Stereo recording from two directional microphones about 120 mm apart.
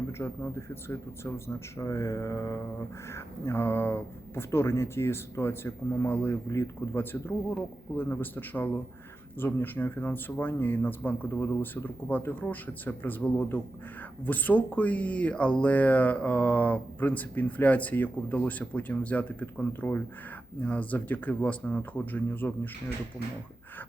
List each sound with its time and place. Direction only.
0.2 s speech: 15° left (ahead or behind)